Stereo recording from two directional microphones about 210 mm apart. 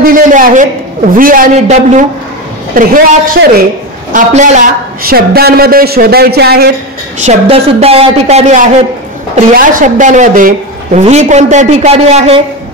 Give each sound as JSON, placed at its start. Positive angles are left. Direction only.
{"t": 0.0, "sound": "a woman's voice", "side_deg": -40}
{"t": 5.1, "sound": "speech", "side_deg": -45}
{"t": 7.2, "sound": "a woman's voice", "side_deg": -30}